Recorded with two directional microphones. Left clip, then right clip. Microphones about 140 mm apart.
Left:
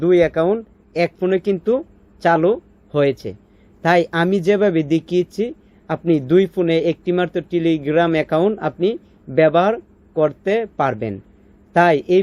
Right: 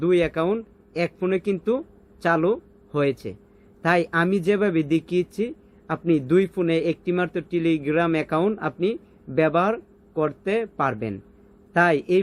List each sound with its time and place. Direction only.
0.0 s speech: 15° left (ahead or behind)